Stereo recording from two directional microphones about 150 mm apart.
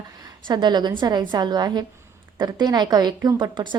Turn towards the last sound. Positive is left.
turn(degrees=-30)  # may be behind; listen again after turning